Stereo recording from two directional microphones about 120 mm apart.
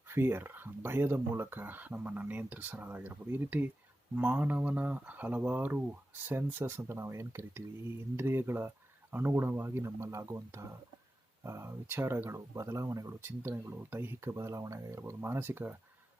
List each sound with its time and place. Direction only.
0.1 s speech: 20° right (ahead or behind)